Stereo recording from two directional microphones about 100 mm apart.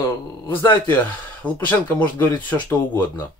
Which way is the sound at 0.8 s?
15° left (ahead or behind).